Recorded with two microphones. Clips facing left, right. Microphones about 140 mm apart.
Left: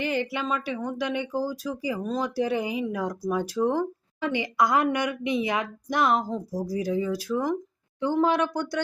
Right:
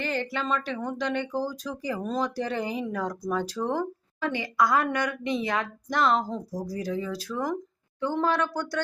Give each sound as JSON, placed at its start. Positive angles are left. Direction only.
{"t": 0.0, "sound": "speech", "side_deg": 15}